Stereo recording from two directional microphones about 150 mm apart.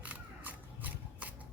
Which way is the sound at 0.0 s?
10° right (ahead or behind).